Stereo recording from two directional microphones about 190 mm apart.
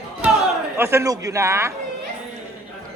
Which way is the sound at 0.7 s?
15° right (ahead or behind).